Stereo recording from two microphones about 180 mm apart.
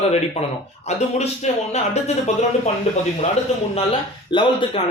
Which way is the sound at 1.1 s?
40° left (ahead or behind).